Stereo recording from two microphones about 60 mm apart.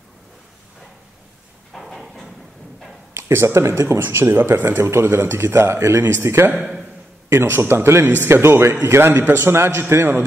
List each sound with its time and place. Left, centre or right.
1.7 s a sound: centre
3.2 s speech: right
4.3 s speech: right